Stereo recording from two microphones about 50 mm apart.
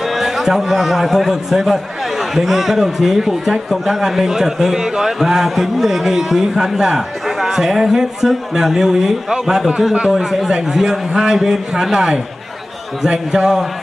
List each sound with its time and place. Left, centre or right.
0.0 s a man's voice: centre